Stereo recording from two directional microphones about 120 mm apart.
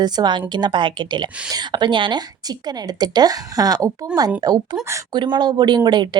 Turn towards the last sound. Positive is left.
turn(degrees=-40)  # may be behind; listen again after turning